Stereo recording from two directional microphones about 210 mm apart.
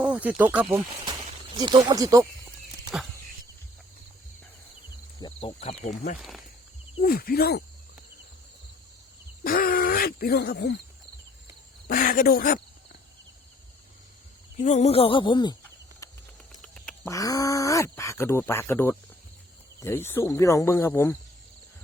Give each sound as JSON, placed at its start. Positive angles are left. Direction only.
{"t": 0.0, "sound": "speech", "side_deg": -5}
{"t": 1.5, "sound": "speech", "side_deg": -20}
{"t": 2.9, "sound": "speech", "side_deg": -5}
{"t": 5.2, "sound": "speech", "side_deg": 30}
{"t": 7.0, "sound": "speech", "side_deg": 45}
{"t": 9.4, "sound": "speech", "side_deg": 45}
{"t": 11.9, "sound": "speech", "side_deg": 45}
{"t": 14.6, "sound": "speech", "side_deg": 35}
{"t": 16.0, "sound": "a sound", "side_deg": 15}
{"t": 16.6, "sound": "duck", "side_deg": 5}
{"t": 17.0, "sound": "speech", "side_deg": 15}